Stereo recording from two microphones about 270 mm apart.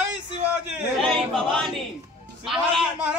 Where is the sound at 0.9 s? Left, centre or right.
Centre.